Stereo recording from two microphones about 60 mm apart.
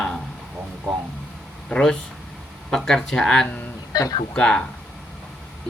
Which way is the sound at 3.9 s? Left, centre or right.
Left.